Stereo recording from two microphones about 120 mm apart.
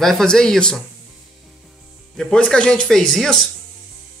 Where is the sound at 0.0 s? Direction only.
5° left (ahead or behind).